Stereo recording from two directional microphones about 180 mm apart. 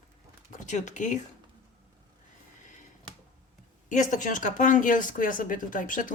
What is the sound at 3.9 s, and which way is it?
Speech, 45° left (ahead or behind).